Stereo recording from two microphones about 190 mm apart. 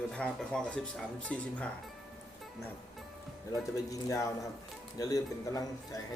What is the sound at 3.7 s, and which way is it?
Speech, 20° left (ahead or behind).